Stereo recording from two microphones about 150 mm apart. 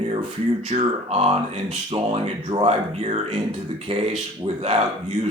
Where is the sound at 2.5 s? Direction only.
40° right (ahead or behind).